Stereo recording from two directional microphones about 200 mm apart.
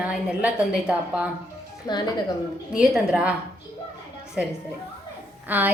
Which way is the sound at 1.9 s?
20° left (ahead or behind).